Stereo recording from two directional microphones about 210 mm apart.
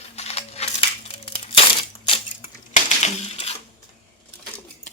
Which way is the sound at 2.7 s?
30° left (ahead or behind).